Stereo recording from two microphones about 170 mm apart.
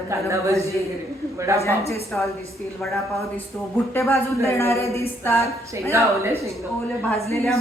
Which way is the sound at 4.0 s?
15° left (ahead or behind).